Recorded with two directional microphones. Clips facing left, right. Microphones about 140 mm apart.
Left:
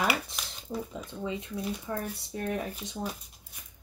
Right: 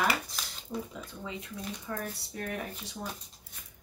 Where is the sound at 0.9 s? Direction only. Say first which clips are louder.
Left 5 dB; 20° left (ahead or behind).